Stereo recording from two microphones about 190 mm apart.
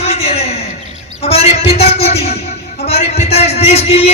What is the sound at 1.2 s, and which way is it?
A man's voice, 35° left (ahead or behind).